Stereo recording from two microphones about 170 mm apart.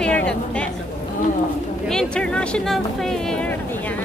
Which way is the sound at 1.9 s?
5° left (ahead or behind).